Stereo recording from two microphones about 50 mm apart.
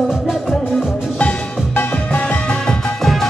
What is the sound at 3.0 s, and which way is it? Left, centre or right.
Music, centre.